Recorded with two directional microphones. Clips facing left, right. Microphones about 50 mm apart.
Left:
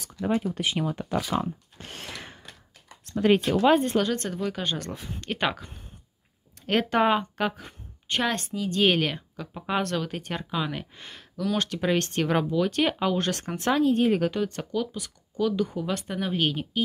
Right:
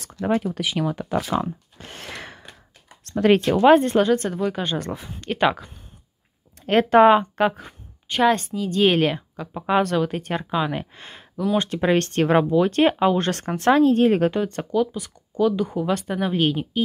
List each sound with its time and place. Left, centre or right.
0.2 s speech: right
2.0 s a sound: right
3.0 s a sound: right
3.4 s speech: right
4.1 s speech: centre
4.7 s speech: right
5.3 s speech: centre
6.6 s speech: centre
7.6 s a sound: centre
8.6 s speech: centre; by 14.3 s right
14.3 s speech: right
16.1 s speech: centre